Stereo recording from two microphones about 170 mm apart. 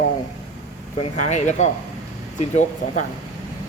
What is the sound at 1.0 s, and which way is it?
Speech, 45° left (ahead or behind).